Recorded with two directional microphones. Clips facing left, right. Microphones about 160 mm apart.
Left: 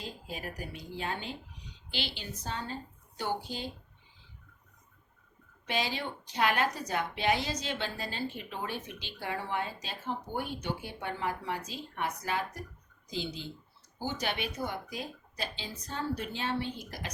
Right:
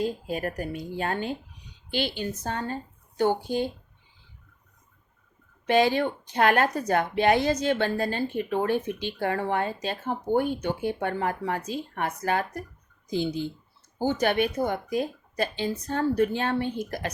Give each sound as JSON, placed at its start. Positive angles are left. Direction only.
{"t": 0.0, "sound": "a woman's voice", "side_deg": -50}
{"t": 5.6, "sound": "a woman's voice", "side_deg": -55}